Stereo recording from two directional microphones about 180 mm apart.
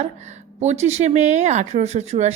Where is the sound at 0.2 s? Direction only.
40° right (ahead or behind).